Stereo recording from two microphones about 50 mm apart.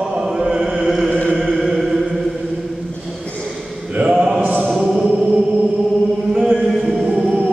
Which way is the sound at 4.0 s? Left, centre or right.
Centre.